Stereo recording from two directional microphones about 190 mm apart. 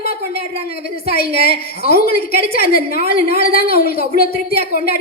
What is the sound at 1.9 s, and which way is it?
A man's voice, 50° left (ahead or behind).